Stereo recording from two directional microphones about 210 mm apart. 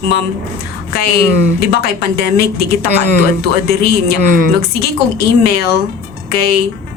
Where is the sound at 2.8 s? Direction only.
50° left (ahead or behind).